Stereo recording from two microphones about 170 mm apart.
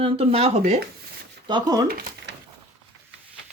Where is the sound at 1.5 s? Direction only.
25° right (ahead or behind).